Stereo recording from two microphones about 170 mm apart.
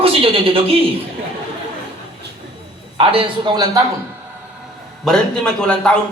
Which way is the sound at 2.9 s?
30° right (ahead or behind).